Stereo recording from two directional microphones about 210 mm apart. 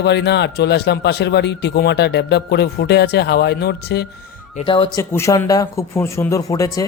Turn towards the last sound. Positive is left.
turn(degrees=15)  # may be behind; listen again after turning